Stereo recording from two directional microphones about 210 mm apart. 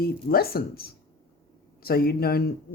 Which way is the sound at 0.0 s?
45° left (ahead or behind).